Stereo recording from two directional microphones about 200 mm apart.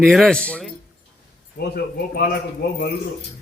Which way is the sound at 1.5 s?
50° left (ahead or behind).